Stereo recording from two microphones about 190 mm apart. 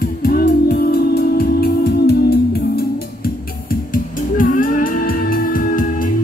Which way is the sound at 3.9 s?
45° left (ahead or behind).